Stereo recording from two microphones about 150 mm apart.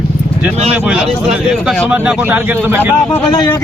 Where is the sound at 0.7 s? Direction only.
5° right (ahead or behind).